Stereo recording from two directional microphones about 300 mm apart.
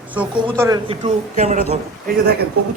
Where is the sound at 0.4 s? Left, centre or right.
Centre.